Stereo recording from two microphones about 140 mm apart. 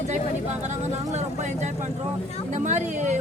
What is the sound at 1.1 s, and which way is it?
Vehicle, 55° right (ahead or behind).